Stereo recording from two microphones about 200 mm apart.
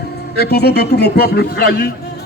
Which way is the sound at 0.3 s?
55° left (ahead or behind).